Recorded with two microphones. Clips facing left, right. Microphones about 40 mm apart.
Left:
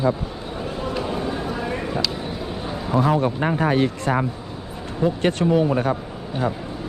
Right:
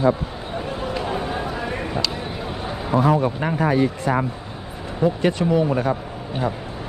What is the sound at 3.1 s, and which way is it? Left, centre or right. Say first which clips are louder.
Speech: even; centre.